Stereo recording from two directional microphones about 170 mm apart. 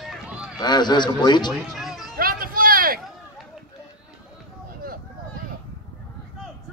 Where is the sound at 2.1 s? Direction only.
55° right (ahead or behind).